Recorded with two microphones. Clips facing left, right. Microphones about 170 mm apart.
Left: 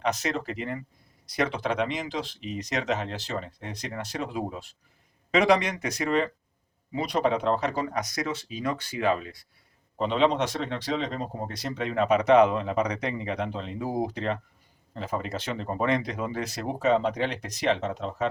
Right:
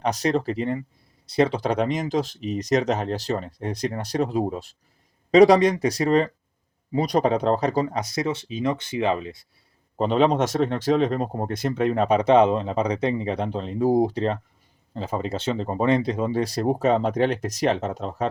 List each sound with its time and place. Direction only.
0.0 s speech: 35° right (ahead or behind)
7.9 s speech: 25° right (ahead or behind)
10.0 s speech: 45° right (ahead or behind)